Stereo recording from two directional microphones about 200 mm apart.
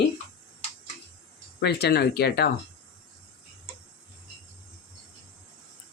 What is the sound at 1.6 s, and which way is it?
Speech, 55° left (ahead or behind).